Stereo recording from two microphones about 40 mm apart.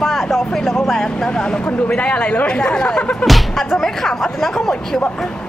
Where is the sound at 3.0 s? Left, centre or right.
Left.